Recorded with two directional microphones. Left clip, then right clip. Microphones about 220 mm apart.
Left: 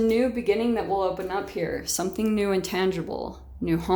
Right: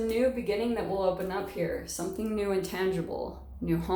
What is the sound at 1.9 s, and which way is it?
A woman's voice, 35° left (ahead or behind).